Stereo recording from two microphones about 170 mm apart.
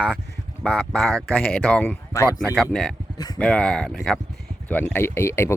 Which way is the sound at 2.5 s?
Centre (ahead or behind).